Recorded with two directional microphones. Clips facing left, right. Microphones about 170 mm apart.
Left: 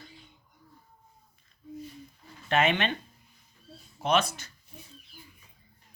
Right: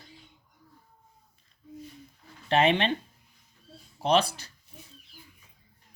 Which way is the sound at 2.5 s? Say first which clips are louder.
Right 2 dB; 30° right (ahead or behind).